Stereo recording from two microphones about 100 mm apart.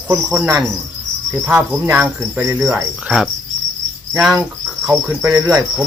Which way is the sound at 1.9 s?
25° right (ahead or behind).